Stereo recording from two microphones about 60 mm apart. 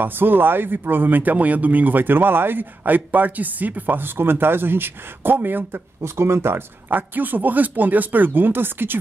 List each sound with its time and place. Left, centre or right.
0.0 s speech: right
6.0 s speech: right